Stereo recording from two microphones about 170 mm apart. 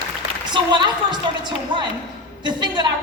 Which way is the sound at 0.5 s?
25° right (ahead or behind).